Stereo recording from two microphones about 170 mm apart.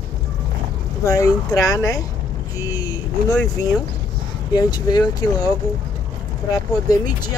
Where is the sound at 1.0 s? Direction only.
20° left (ahead or behind).